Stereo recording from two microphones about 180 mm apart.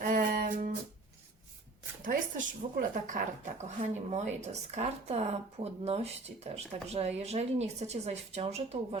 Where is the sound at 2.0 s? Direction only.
45° right (ahead or behind).